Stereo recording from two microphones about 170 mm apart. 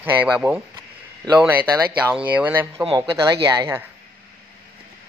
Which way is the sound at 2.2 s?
10° right (ahead or behind).